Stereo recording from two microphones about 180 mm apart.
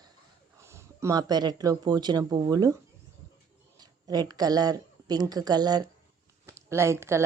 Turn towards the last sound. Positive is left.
turn(degrees=-15)  # may be behind; listen again after turning